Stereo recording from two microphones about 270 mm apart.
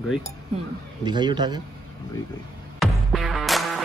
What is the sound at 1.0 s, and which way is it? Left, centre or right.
Speech, centre.